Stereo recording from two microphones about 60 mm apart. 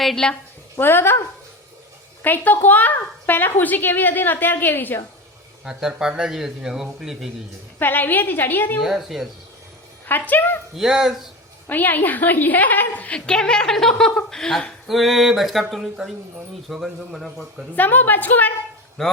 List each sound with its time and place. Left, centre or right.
0.2 s speech: centre
0.8 s a woman's voice: left
2.2 s a woman's voice: left
5.6 s a man's voice: centre
7.8 s a woman's voice: left
8.8 s a sound: centre
10.1 s a woman's voice: left
10.8 s a sound: centre
11.7 s a woman's voice: left
13.1 s speech: centre
14.8 s a sound: centre
17.7 s a woman's voice: left
19.0 s speech: centre